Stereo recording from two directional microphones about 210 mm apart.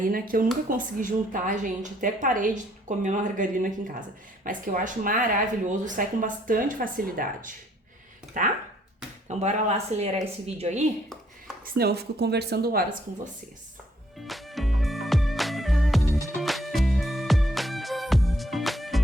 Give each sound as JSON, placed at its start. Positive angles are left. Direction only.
{"t": 0.0, "sound": "speech", "side_deg": -45}
{"t": 11.6, "sound": "speech", "side_deg": -45}
{"t": 14.3, "sound": "music", "side_deg": 0}